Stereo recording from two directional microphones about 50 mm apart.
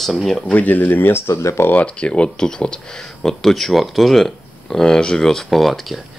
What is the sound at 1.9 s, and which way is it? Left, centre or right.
Speech, left.